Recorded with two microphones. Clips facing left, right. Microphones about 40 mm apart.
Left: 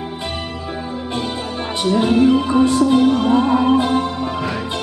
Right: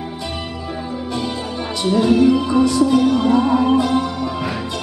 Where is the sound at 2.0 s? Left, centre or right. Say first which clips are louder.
Even; left.